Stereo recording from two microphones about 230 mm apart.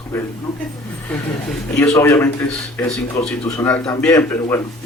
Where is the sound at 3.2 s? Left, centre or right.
Left.